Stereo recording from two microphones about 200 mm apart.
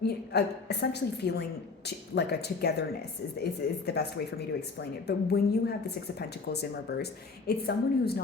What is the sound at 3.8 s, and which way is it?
A woman's voice, 55° left (ahead or behind).